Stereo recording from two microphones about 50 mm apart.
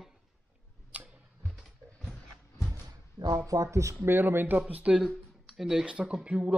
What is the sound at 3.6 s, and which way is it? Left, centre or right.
Speech, right.